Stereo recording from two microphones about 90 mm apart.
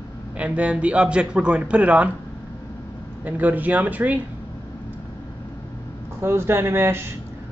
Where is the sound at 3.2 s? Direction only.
20° right (ahead or behind).